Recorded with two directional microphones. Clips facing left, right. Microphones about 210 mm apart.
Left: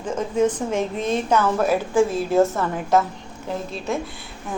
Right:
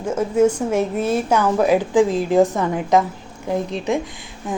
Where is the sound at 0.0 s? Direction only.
10° right (ahead or behind).